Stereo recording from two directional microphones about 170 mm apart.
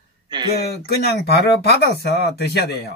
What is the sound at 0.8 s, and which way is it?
Speech, 70° left (ahead or behind).